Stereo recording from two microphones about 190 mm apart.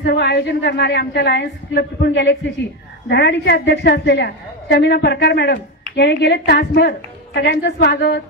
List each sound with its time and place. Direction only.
0.0 s a woman's voice: 60° left (ahead or behind)